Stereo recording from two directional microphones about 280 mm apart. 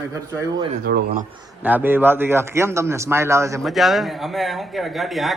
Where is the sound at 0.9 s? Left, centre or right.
Right.